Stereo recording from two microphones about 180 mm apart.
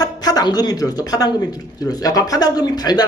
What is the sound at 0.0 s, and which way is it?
Speech, 20° left (ahead or behind).